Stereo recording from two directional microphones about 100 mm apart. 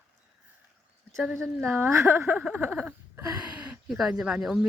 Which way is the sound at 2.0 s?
25° right (ahead or behind).